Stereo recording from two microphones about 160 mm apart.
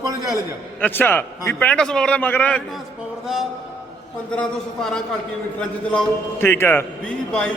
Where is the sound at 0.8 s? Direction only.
10° left (ahead or behind).